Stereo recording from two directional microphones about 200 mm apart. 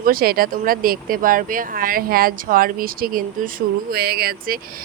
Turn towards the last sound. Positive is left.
turn(degrees=-45)  # may be behind; listen again after turning